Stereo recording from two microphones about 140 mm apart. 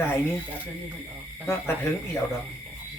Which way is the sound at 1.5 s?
15° left (ahead or behind).